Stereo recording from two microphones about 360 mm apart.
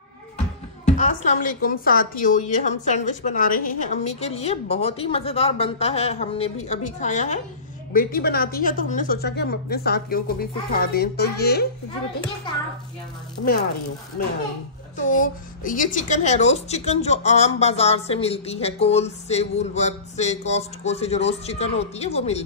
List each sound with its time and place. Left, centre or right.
0.8 s a woman's voice: left
14.2 s a woman's voice: left